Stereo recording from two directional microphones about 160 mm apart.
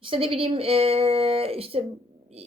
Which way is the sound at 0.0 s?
35° right (ahead or behind).